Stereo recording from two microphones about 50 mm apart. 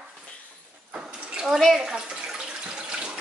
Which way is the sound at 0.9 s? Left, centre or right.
Right.